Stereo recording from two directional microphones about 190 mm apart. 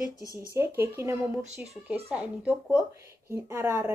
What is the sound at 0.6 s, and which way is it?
Speech, 15° right (ahead or behind).